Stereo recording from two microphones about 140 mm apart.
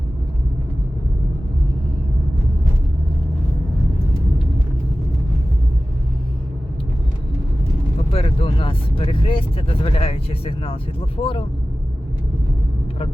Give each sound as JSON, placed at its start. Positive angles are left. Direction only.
{"t": 8.1, "sound": "speech", "side_deg": 45}